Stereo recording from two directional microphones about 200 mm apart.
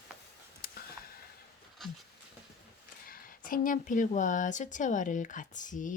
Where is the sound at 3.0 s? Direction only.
45° left (ahead or behind).